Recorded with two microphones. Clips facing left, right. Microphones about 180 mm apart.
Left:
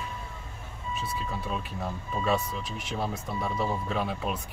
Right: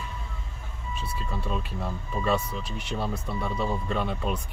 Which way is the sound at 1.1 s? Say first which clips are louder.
Right 3 dB; centre (ahead or behind).